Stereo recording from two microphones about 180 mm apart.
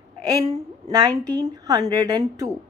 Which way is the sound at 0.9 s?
20° right (ahead or behind).